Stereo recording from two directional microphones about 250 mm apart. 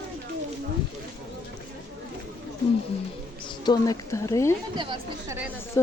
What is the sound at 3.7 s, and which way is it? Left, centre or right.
Speech, centre.